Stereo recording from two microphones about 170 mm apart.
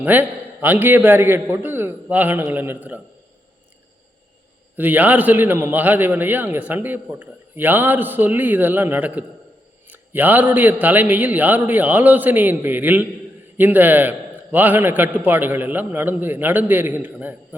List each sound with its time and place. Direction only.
0.0 s a man's voice: 10° right (ahead or behind)
4.8 s a man's voice: 10° right (ahead or behind)